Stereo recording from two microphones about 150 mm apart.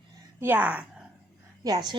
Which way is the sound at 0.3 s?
10° right (ahead or behind).